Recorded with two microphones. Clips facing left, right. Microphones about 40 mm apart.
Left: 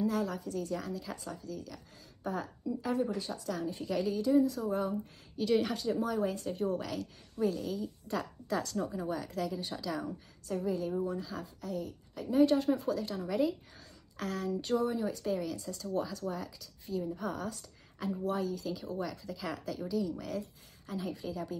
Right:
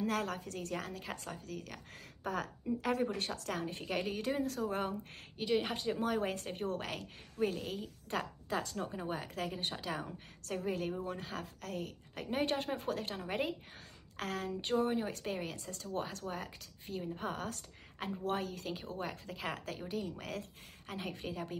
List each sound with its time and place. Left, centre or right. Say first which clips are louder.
0.0 s a woman's voice: left 3 dB; right
2.2 s a woman's voice: left 1 dB; right
2.8 s a woman's voice: left 2 dB; right
5.4 s a woman's voice: left 4 dB; right
5.8 s a woman's voice: left 2 dB; right